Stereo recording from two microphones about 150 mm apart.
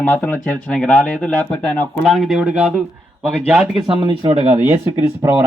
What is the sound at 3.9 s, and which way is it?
Speech, 35° right (ahead or behind).